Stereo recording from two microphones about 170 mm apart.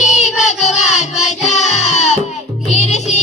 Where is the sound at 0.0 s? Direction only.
45° left (ahead or behind).